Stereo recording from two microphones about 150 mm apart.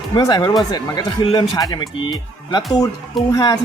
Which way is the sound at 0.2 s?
25° left (ahead or behind).